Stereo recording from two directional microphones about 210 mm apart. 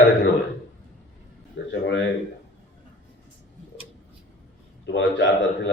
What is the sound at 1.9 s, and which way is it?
Speech, 55° left (ahead or behind).